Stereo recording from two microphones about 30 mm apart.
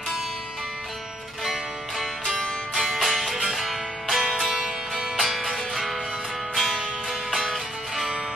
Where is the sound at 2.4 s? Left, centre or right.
Left.